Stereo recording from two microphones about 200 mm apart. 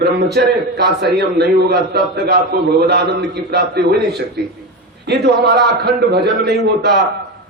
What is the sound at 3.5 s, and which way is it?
A man's voice, 55° right (ahead or behind).